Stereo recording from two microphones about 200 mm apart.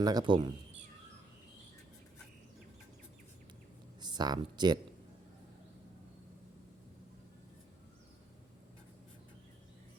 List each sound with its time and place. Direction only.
0.0 s speech: 20° right (ahead or behind)
4.0 s speech: 20° right (ahead or behind)